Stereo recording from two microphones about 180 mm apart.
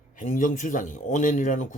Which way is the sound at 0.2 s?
45° left (ahead or behind).